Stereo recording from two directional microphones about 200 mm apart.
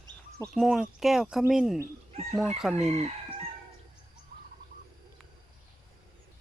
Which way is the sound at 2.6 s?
Centre (ahead or behind).